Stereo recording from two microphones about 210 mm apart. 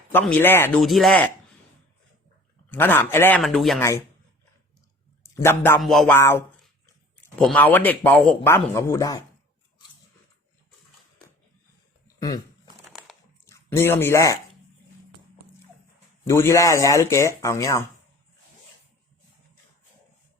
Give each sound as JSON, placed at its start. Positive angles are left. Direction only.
{"t": 0.1, "sound": "speech", "side_deg": 10}
{"t": 2.6, "sound": "speech", "side_deg": 10}
{"t": 3.8, "sound": "speech", "side_deg": 15}
{"t": 5.2, "sound": "speech", "side_deg": 10}
{"t": 5.8, "sound": "a sound", "side_deg": 0}
{"t": 6.1, "sound": "speech", "side_deg": 10}
{"t": 12.0, "sound": "a sound", "side_deg": 20}
{"t": 12.9, "sound": "a sound", "side_deg": 0}
{"t": 13.4, "sound": "speech", "side_deg": 15}
{"t": 16.2, "sound": "speech", "side_deg": 15}